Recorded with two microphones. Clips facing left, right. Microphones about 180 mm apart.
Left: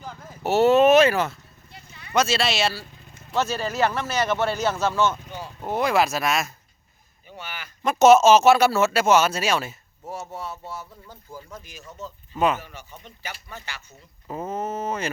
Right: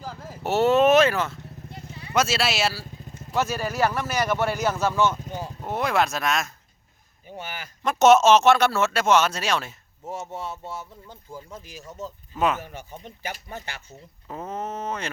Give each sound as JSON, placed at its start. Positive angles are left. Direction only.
{"t": 0.0, "sound": "vehicle", "side_deg": -30}
{"t": 0.4, "sound": "speech", "side_deg": 0}
{"t": 2.1, "sound": "speech", "side_deg": -5}
{"t": 3.0, "sound": "vehicle", "side_deg": -40}
{"t": 3.3, "sound": "speech", "side_deg": -10}
{"t": 5.2, "sound": "a sound", "side_deg": -40}
{"t": 5.6, "sound": "speech", "side_deg": 0}
{"t": 7.3, "sound": "speech", "side_deg": -45}
{"t": 7.8, "sound": "speech", "side_deg": 0}
{"t": 10.1, "sound": "speech", "side_deg": -25}
{"t": 12.3, "sound": "speech", "side_deg": 0}
{"t": 13.1, "sound": "speech", "side_deg": -50}
{"t": 14.3, "sound": "a sound", "side_deg": 5}